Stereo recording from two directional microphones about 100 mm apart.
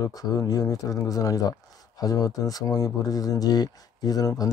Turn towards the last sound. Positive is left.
turn(degrees=35)  # may be behind; listen again after turning